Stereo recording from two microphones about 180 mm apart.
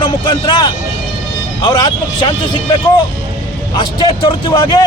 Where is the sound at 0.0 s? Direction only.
25° left (ahead or behind).